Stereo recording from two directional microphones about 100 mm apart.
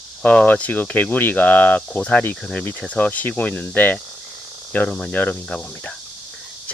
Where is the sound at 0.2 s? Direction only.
15° left (ahead or behind).